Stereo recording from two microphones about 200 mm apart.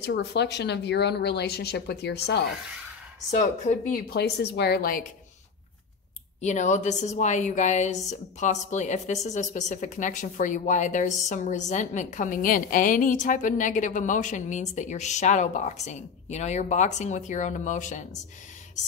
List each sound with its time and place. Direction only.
0.0 s speech: 55° left (ahead or behind)
3.3 s speech: 35° left (ahead or behind)
6.4 s a woman's voice: 35° left (ahead or behind)